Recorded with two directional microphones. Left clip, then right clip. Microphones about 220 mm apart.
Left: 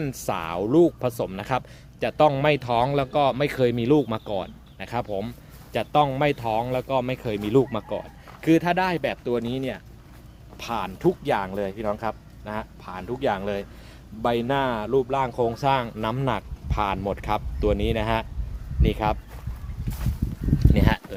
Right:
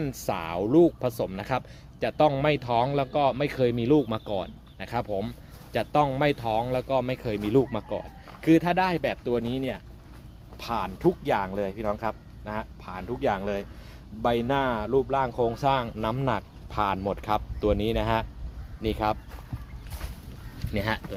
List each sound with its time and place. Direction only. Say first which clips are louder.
0.0 s speech: left 2 dB; 10° left (ahead or behind)
20.6 s speech: left 4 dB; 10° left (ahead or behind)